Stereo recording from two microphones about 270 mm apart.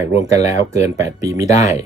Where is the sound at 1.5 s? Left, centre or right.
Left.